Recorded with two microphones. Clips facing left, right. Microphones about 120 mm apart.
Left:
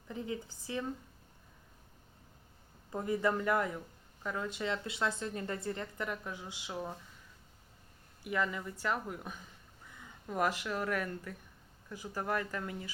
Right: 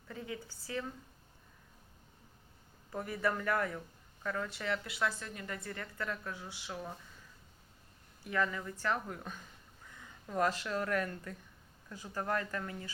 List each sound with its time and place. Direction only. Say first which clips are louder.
0.1 s a woman's voice: left 4 dB; 20° left (ahead or behind)
2.9 s a woman's voice: left 3 dB; 20° left (ahead or behind)
8.2 s speech: even; 15° left (ahead or behind)